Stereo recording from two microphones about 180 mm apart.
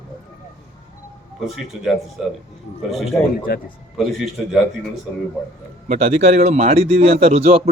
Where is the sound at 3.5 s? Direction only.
55° left (ahead or behind).